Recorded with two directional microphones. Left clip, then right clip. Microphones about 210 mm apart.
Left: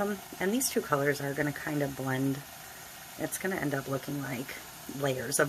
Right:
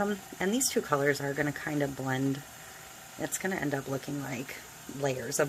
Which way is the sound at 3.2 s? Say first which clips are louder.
Even; 5° right (ahead or behind).